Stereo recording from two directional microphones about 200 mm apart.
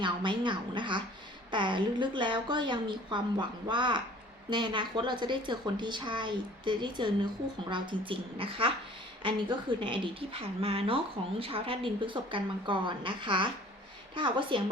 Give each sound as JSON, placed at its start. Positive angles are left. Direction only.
{"t": 0.0, "sound": "a woman's voice", "side_deg": -25}